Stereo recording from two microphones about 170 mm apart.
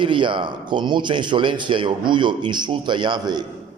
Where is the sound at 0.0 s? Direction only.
30° right (ahead or behind).